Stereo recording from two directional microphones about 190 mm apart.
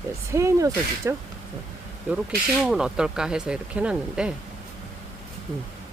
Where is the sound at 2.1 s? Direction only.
5° right (ahead or behind).